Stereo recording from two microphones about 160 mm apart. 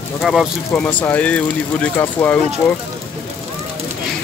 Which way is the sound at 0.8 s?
10° left (ahead or behind).